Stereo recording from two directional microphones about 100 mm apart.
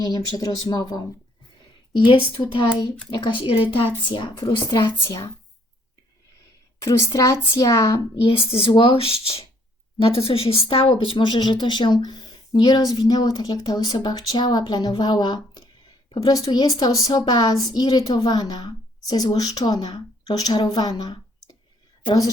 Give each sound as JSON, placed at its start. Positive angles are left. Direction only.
{"t": 0.0, "sound": "speech", "side_deg": 45}
{"t": 2.0, "sound": "speech", "side_deg": 60}
{"t": 4.1, "sound": "speech", "side_deg": 50}
{"t": 4.8, "sound": "speech", "side_deg": 30}
{"t": 6.7, "sound": "speech", "side_deg": 30}
{"t": 8.2, "sound": "speech", "side_deg": 65}
{"t": 8.7, "sound": "a woman's voice", "side_deg": 60}